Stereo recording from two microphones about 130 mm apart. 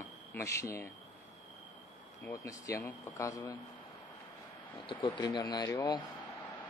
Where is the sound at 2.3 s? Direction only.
25° left (ahead or behind).